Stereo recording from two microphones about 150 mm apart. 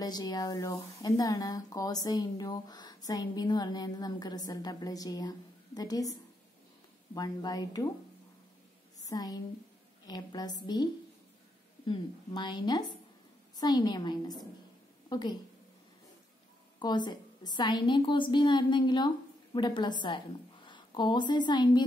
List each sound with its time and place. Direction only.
0.0 s speech: 25° left (ahead or behind)
7.2 s speech: 25° left (ahead or behind)
9.0 s a woman's voice: 25° left (ahead or behind)
16.8 s a woman's voice: 30° left (ahead or behind)